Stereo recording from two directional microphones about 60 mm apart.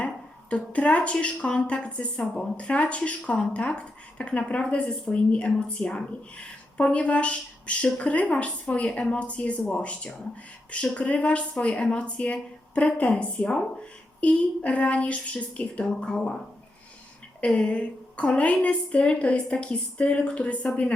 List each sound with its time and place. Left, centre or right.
0.5 s a woman's voice: left
17.4 s a woman's voice: centre